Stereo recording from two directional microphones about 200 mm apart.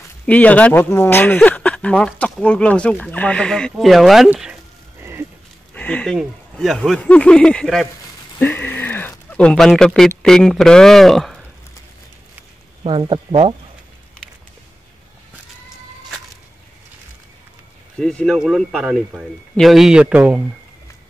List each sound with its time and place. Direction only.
0.3 s speech: 5° left (ahead or behind)
5.8 s a man's voice: 5° left (ahead or behind)
12.8 s speech: 25° right (ahead or behind)
17.9 s a man's voice: 5° left (ahead or behind)